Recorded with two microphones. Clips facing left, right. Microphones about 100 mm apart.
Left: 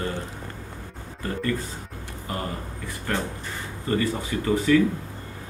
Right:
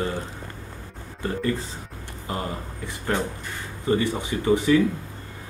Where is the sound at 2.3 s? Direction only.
25° right (ahead or behind).